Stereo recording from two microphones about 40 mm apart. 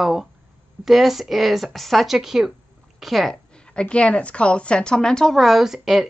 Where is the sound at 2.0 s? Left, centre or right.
Centre.